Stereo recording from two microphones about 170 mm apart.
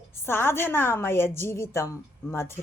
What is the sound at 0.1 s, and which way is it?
A woman's voice, 15° left (ahead or behind).